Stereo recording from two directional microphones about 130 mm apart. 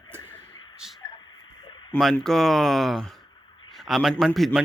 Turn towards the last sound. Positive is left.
turn(degrees=0)  # may be behind; listen again after turning